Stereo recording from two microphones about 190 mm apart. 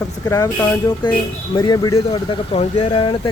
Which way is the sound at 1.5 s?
20° left (ahead or behind).